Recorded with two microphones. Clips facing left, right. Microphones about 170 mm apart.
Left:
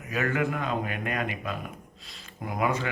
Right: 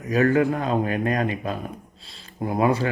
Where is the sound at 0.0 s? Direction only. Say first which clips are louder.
Right 9 dB; 35° right (ahead or behind).